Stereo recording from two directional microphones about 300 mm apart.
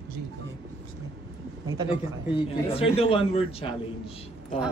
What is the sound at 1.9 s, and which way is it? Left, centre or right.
A man's voice, centre.